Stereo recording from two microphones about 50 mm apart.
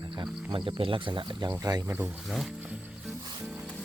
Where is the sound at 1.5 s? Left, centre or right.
Right.